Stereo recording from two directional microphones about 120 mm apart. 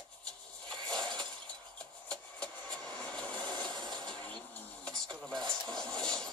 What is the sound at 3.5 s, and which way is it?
Train, 40° right (ahead or behind).